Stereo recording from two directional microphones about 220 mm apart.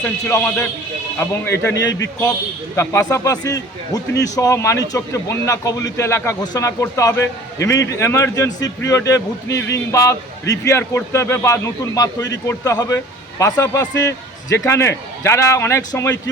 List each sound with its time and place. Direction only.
0.0 s a man's voice: 10° left (ahead or behind)
9.6 s speech: 55° left (ahead or behind)
9.9 s a man's voice: 15° left (ahead or behind)